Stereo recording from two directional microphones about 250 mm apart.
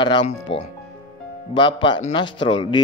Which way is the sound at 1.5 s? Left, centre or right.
Centre.